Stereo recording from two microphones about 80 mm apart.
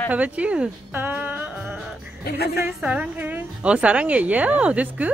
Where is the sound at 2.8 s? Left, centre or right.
Centre.